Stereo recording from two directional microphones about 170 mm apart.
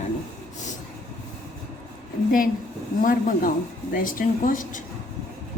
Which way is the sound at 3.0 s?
55° left (ahead or behind).